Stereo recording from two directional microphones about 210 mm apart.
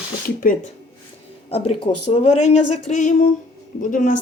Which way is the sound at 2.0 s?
30° left (ahead or behind).